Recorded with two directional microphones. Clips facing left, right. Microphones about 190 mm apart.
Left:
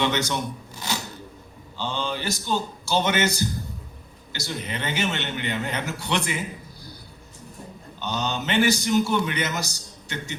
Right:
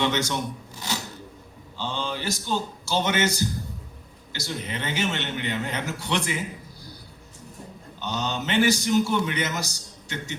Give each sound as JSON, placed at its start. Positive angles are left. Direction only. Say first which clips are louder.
{"t": 0.0, "sound": "a man's voice", "louder": "left 1 dB", "side_deg": 60}
{"t": 1.7, "sound": "a man's voice", "louder": "left 2 dB", "side_deg": 60}
{"t": 7.9, "sound": "a man's voice", "louder": "left 1 dB", "side_deg": 60}